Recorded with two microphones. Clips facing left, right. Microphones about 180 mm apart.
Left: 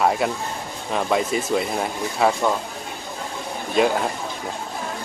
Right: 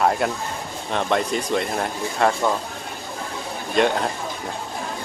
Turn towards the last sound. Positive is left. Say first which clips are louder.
# even
turn(degrees=5)  # may be behind; listen again after turning